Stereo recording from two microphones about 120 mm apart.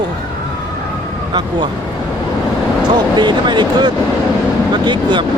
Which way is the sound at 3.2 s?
40° right (ahead or behind).